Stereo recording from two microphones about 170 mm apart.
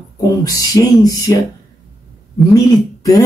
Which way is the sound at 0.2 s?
20° left (ahead or behind).